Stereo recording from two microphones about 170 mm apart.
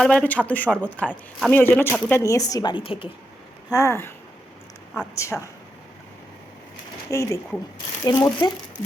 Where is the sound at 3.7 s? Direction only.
15° left (ahead or behind).